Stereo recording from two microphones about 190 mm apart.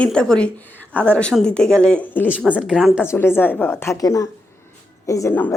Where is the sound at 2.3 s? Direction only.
5° right (ahead or behind).